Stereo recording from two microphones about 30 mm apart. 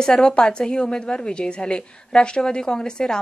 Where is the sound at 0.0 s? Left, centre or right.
Left.